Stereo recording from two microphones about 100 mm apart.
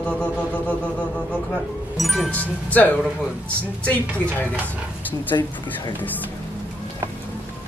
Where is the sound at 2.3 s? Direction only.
15° left (ahead or behind).